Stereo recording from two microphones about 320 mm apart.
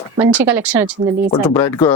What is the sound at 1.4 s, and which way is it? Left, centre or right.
Speech, centre.